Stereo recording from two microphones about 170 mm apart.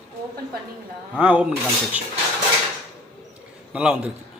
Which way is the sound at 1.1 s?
5° right (ahead or behind).